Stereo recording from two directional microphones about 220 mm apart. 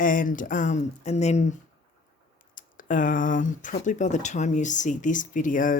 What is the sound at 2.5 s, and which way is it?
Speech, 35° left (ahead or behind).